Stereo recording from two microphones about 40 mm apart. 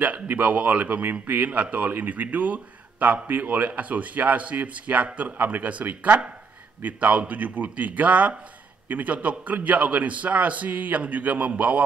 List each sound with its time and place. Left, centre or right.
0.0 s a man's voice: right
3.6 s a man's voice: right